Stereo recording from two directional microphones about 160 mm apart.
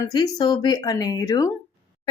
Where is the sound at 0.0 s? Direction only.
25° left (ahead or behind).